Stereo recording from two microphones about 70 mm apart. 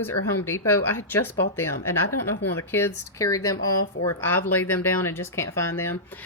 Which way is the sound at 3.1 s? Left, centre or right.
Left.